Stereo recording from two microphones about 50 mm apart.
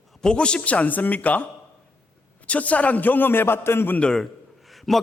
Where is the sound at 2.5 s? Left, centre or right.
Left.